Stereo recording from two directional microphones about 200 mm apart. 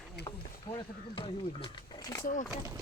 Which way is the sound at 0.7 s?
25° left (ahead or behind).